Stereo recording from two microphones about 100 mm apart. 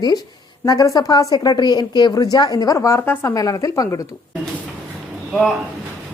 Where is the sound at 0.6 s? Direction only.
35° left (ahead or behind).